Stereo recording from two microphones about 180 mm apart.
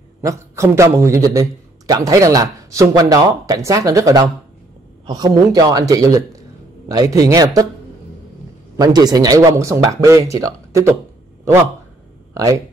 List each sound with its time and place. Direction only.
0.2 s a man's voice: 15° right (ahead or behind)
8.7 s speech: 20° right (ahead or behind)
12.4 s speech: 20° right (ahead or behind)